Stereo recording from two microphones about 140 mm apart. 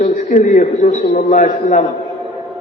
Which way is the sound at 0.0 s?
65° left (ahead or behind).